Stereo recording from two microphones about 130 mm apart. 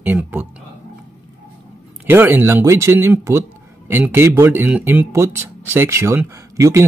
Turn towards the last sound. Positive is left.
turn(degrees=-25)  # may be behind; listen again after turning